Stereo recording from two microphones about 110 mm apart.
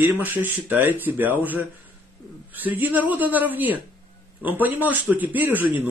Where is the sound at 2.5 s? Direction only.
15° right (ahead or behind).